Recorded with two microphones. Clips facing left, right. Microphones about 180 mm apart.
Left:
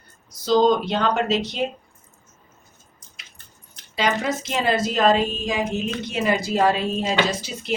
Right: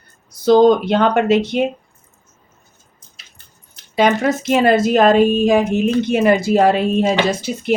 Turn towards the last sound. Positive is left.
turn(degrees=-55)  # may be behind; listen again after turning